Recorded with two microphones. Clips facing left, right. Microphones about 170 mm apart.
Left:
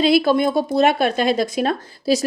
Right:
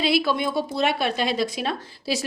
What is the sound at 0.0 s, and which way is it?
A woman's voice, 45° left (ahead or behind).